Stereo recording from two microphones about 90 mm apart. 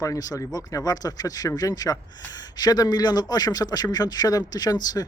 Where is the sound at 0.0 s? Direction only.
40° left (ahead or behind).